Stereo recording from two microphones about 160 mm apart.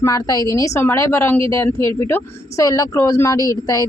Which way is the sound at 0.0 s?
20° left (ahead or behind).